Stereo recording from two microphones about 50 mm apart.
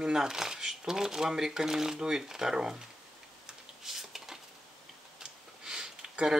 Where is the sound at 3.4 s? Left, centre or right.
Centre.